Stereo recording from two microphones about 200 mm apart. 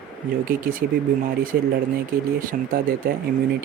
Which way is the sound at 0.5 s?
45° right (ahead or behind).